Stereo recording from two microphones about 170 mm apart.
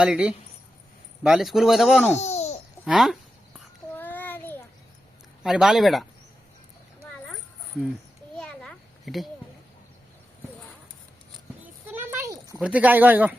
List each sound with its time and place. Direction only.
0.0 s speech: 5° right (ahead or behind)
2.1 s babbling: 40° left (ahead or behind)
2.8 s speech: centre (ahead or behind)
3.9 s child singing: 10° left (ahead or behind)
5.4 s speech: centre (ahead or behind)
8.4 s a sound: 5° left (ahead or behind)
11.6 s a sound: 10° right (ahead or behind)
12.5 s speech: 10° right (ahead or behind)